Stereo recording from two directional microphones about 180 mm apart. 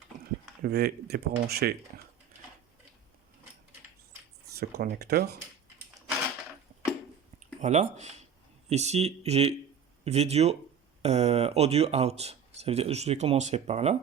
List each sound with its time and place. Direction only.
0.6 s speech: 60° right (ahead or behind)
4.6 s speech: 60° right (ahead or behind)
7.6 s speech: 40° right (ahead or behind)